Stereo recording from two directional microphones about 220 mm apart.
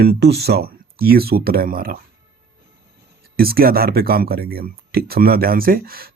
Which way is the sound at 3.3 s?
45° right (ahead or behind).